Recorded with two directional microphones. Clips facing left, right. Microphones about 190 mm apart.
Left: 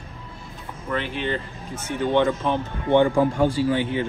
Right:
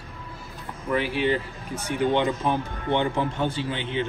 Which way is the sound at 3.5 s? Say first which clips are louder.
Left 7 dB; 25° right (ahead or behind).